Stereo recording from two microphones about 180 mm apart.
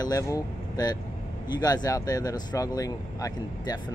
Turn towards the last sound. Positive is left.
turn(degrees=20)  # may be behind; listen again after turning